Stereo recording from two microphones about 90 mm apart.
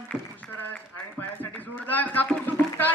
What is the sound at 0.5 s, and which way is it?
Speech, 20° left (ahead or behind).